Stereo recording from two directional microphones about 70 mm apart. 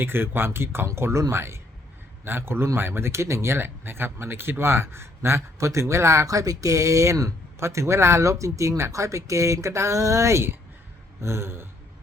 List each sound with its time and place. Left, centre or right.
0.0 s speech: right